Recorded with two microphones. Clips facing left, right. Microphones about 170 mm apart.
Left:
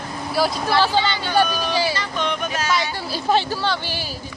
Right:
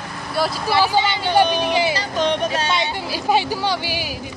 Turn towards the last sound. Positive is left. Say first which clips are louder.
# right 2 dB
turn(degrees=-15)  # may be behind; listen again after turning